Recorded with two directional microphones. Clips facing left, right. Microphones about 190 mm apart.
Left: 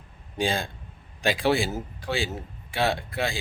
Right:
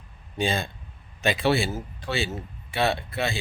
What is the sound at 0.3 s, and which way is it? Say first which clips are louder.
Speech: even; 15° left (ahead or behind).